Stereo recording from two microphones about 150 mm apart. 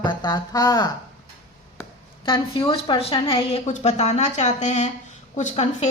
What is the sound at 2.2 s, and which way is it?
A woman's voice, 35° left (ahead or behind).